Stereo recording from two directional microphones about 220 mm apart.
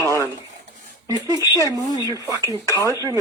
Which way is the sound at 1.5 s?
15° left (ahead or behind).